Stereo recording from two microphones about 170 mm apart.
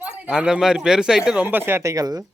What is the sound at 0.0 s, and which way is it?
Speech, 5° right (ahead or behind).